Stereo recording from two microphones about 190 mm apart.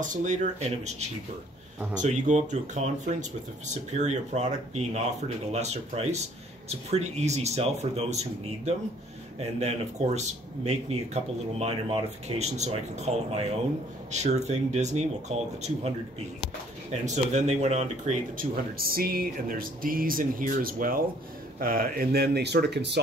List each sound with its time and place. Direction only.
0.0 s speech: 40° right (ahead or behind)
16.9 s speech: 35° right (ahead or behind)
18.8 s speech: 50° right (ahead or behind)